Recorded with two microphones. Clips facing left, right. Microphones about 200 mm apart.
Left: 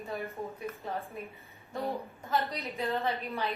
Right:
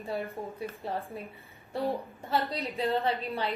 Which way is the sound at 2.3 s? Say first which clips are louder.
Right 2 dB; 30° right (ahead or behind).